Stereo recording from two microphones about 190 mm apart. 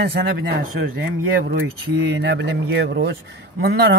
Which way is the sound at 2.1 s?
65° right (ahead or behind).